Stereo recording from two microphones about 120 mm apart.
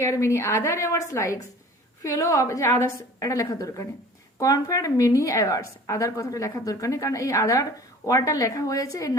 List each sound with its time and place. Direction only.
0.0 s a woman's voice: 25° left (ahead or behind)